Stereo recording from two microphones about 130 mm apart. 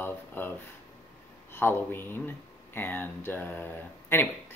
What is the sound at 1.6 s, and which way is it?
Speech, 15° left (ahead or behind).